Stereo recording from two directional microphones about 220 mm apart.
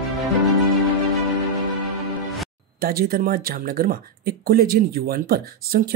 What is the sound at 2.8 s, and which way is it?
Speech, 40° right (ahead or behind).